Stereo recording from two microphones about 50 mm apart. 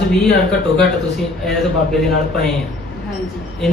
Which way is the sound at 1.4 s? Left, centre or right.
Centre.